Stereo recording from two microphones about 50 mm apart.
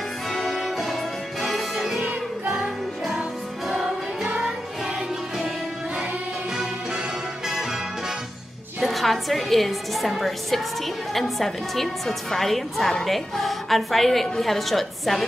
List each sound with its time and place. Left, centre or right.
0.3 s music: centre
3.6 s music: centre
4.2 s music: centre
6.5 s music: centre
8.8 s a woman's voice: centre